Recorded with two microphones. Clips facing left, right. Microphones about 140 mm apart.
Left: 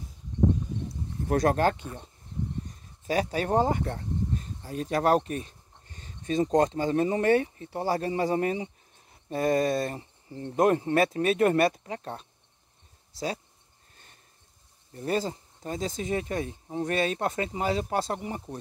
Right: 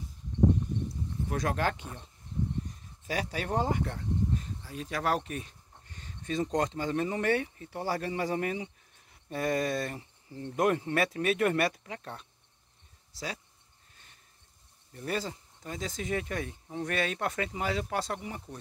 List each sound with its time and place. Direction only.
1.3 s speech: 40° left (ahead or behind)
3.1 s speech: 40° left (ahead or behind)
14.9 s speech: 30° left (ahead or behind)